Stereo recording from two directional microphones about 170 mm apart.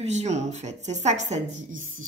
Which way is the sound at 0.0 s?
40° right (ahead or behind).